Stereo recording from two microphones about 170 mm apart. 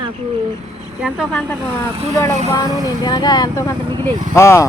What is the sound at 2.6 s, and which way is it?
A man's voice, 25° left (ahead or behind).